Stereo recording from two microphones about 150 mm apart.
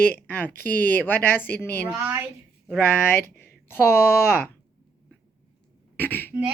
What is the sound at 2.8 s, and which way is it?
Speech, 15° left (ahead or behind).